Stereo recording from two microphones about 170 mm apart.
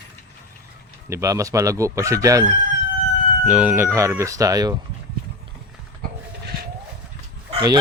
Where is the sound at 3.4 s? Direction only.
5° right (ahead or behind).